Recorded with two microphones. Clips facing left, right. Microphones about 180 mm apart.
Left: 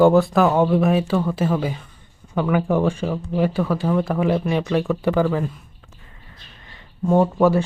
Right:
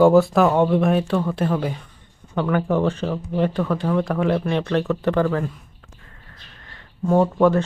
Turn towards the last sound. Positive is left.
turn(degrees=5)  # may be behind; listen again after turning